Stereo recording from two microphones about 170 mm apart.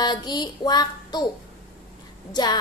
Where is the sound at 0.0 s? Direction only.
25° left (ahead or behind).